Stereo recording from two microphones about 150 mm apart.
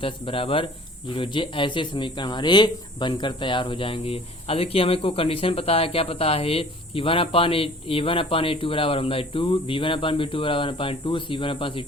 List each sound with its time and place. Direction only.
0.0 s speech: 35° left (ahead or behind)